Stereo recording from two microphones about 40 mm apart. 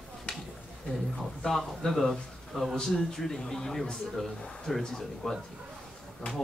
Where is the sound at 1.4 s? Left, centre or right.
Centre.